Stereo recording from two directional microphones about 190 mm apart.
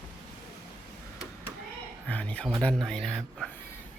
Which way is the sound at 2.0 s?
5° left (ahead or behind).